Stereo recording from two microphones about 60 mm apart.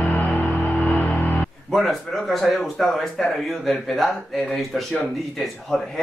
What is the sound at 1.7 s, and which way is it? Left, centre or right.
Speech, centre.